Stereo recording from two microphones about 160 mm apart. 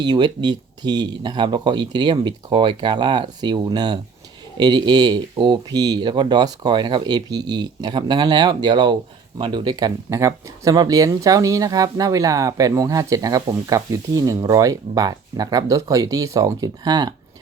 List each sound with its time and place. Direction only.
0.0 s speech: 25° right (ahead or behind)